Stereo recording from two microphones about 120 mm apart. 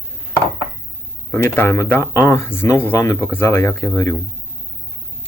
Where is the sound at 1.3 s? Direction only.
20° left (ahead or behind).